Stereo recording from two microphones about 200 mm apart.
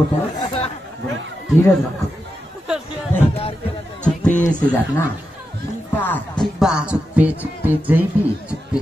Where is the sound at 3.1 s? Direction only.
10° left (ahead or behind).